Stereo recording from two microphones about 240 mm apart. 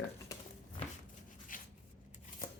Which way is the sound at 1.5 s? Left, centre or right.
Left.